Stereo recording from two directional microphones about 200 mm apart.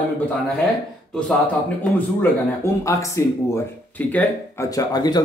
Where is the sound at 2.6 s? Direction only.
15° left (ahead or behind).